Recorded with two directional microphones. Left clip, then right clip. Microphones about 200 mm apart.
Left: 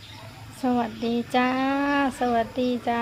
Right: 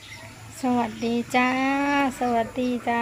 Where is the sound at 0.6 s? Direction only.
Centre (ahead or behind).